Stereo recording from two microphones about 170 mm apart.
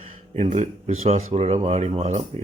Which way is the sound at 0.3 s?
40° right (ahead or behind).